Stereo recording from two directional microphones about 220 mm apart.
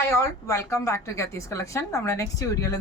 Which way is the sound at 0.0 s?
15° left (ahead or behind).